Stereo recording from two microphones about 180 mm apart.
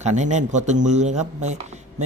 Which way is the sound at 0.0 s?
40° right (ahead or behind).